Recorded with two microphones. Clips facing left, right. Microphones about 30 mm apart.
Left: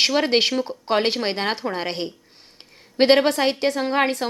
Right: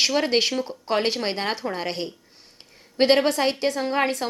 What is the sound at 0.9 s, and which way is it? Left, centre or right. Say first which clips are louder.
A woman's voice: left 2 dB; left.